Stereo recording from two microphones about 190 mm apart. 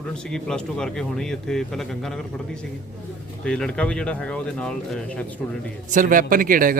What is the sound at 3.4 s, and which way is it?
A man's voice, 5° left (ahead or behind).